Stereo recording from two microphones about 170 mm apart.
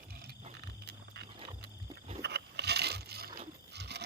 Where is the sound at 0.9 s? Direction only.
70° right (ahead or behind).